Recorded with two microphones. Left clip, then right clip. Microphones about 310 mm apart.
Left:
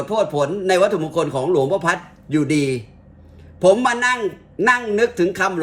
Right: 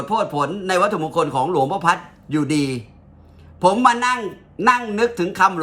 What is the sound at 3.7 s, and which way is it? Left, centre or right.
Speech, right.